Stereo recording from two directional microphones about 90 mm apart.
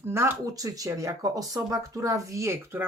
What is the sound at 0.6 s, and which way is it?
Speech, 40° right (ahead or behind).